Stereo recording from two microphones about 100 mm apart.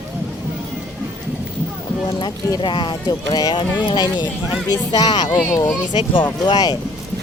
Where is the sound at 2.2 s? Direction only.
50° left (ahead or behind).